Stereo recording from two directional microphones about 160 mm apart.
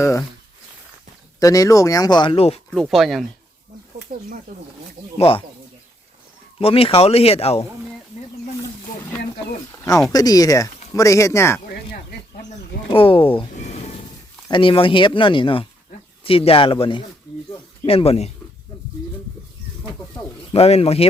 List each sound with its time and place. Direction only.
0.0 s speech: 20° left (ahead or behind)
1.4 s speech: 20° left (ahead or behind); by 2.6 s 35° left (ahead or behind)
2.6 s speech: centre (ahead or behind)
4.5 s speech: 60° right (ahead or behind)
5.1 s speech: 35° left (ahead or behind)
6.6 s speech: 35° left (ahead or behind)
10.1 s speech: 25° left (ahead or behind)
12.9 s speech: 35° left (ahead or behind)
13.5 s a sound: 45° left (ahead or behind)
14.4 s speech: 30° left (ahead or behind)
20.5 s speech: 40° left (ahead or behind)